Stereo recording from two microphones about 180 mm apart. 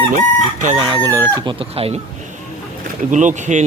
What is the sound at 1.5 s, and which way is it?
Speech, 35° right (ahead or behind).